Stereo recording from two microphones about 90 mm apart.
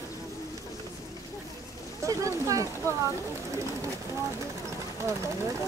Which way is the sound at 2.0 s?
35° right (ahead or behind).